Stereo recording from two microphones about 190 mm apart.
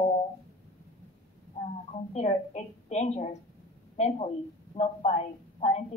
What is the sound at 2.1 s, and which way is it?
A woman's voice, 35° left (ahead or behind).